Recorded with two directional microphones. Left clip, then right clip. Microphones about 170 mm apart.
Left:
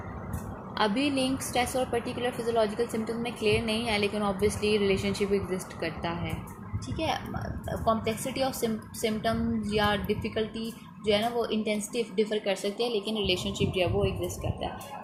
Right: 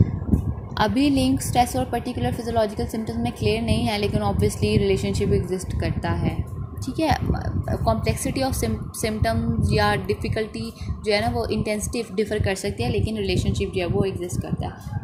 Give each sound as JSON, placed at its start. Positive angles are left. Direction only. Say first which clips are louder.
{"t": 0.8, "sound": "a woman's voice", "louder": "right 6 dB", "side_deg": -40}
{"t": 13.6, "sound": "a woman's voice", "louder": "right 3 dB", "side_deg": -40}